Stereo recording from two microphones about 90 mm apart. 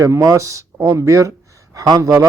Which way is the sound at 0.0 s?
35° right (ahead or behind).